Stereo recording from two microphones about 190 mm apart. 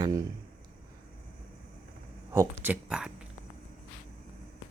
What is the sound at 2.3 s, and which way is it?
Speech, 10° right (ahead or behind).